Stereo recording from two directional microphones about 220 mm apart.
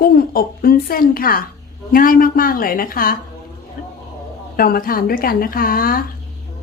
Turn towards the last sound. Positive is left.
turn(degrees=40)  # may be behind; listen again after turning